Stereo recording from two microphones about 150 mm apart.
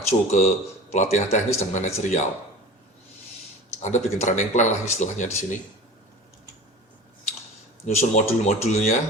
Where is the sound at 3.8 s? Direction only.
55° left (ahead or behind).